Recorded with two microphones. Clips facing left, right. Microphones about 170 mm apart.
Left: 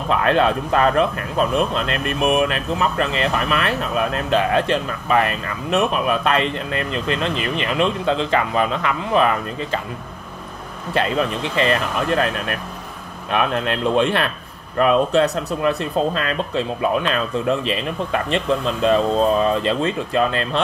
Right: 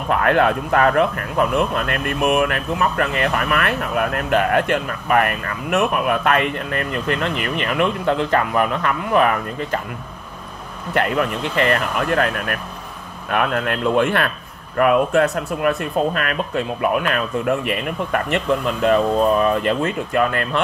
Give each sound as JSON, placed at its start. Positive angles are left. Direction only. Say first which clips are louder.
{"t": 0.1, "sound": "speech", "louder": "right 1 dB", "side_deg": 20}
{"t": 10.9, "sound": "speech", "louder": "even", "side_deg": 20}